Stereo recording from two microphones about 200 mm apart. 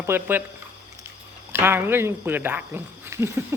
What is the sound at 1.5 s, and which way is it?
Speech, 10° right (ahead or behind).